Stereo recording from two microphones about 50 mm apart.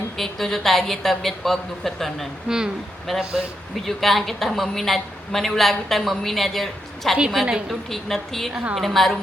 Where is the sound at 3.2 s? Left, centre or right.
Centre.